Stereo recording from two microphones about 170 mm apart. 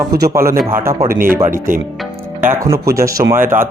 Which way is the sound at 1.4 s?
55° right (ahead or behind).